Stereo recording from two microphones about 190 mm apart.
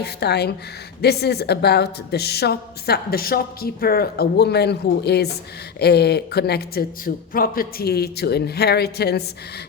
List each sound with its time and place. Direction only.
0.0 s a woman's voice: 60° left (ahead or behind)